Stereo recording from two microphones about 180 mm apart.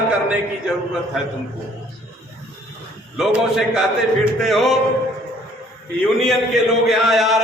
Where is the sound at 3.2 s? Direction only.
5° right (ahead or behind).